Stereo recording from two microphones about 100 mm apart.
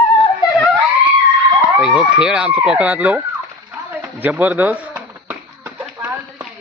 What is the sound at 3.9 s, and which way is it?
Speech, 20° right (ahead or behind).